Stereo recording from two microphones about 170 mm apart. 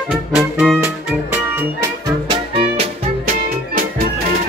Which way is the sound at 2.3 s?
35° right (ahead or behind).